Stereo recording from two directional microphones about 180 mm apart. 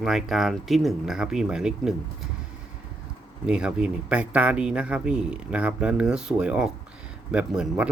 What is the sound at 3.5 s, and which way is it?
Speech, 5° right (ahead or behind).